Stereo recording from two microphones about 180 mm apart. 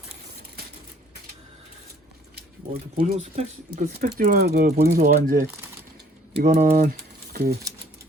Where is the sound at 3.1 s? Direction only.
35° right (ahead or behind).